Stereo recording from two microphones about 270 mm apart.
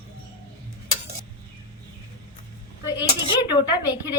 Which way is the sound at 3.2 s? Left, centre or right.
Centre.